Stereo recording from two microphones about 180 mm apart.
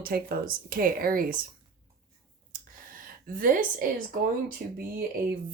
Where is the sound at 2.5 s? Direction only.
50° right (ahead or behind).